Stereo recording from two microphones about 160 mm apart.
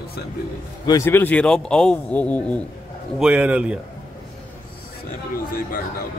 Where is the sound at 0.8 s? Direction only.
20° left (ahead or behind).